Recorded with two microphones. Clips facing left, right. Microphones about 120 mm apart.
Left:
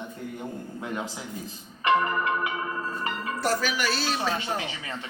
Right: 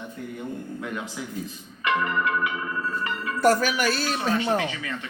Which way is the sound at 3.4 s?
50° right (ahead or behind).